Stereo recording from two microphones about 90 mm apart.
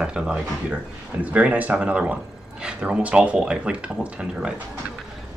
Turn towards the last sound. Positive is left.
turn(degrees=-10)  # may be behind; listen again after turning